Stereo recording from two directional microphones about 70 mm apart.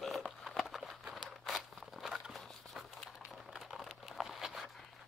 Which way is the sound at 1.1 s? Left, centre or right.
Centre.